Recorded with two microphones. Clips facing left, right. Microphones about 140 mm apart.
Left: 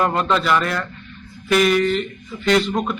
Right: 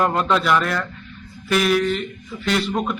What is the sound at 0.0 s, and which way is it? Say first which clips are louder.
A man's voice: even; centre (ahead or behind).